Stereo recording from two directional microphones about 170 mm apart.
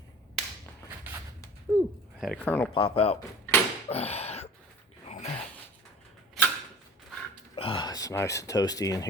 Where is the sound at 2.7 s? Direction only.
35° left (ahead or behind).